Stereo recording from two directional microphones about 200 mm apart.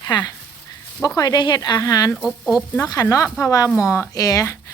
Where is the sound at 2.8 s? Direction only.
15° left (ahead or behind).